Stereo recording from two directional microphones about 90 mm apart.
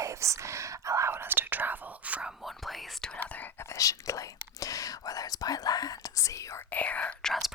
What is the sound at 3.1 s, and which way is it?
Whispering, 20° left (ahead or behind).